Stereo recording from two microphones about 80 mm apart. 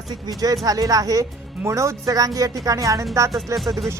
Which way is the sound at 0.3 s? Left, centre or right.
Right.